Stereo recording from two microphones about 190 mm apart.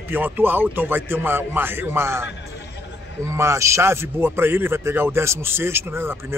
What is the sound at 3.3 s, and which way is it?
Speech, 15° right (ahead or behind).